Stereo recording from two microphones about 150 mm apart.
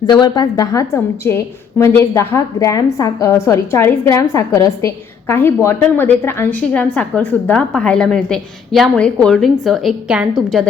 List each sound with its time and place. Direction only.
0.1 s a woman's voice: 25° left (ahead or behind); by 10.7 s 5° right (ahead or behind)